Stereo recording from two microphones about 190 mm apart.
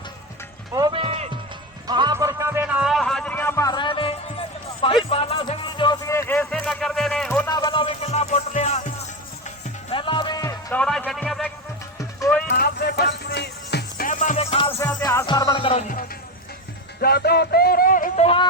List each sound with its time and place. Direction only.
0.7 s music: 20° right (ahead or behind); by 7.5 s 10° left (ahead or behind)
7.5 s music: 25° left (ahead or behind)
9.9 s music: 25° left (ahead or behind)
10.8 s a sound: 5° left (ahead or behind)
12.5 s music: 55° left (ahead or behind)
14.1 s music: 40° left (ahead or behind)
14.8 s music: 15° left (ahead or behind)
17.0 s a sound: 55° left (ahead or behind)